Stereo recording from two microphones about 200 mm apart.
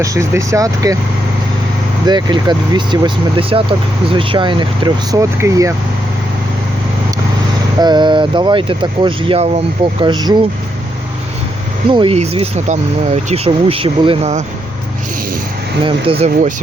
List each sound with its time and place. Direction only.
0.0 s speech: 15° right (ahead or behind)
2.0 s speech: 20° right (ahead or behind)
7.8 s speech: 20° right (ahead or behind)
11.9 s speech: 25° right (ahead or behind)
15.8 s speech: 25° right (ahead or behind)